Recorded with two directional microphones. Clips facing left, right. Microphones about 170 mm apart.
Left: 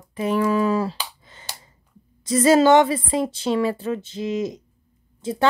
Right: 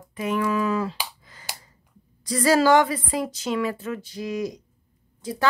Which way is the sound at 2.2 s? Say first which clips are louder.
Left 4 dB; 25° left (ahead or behind).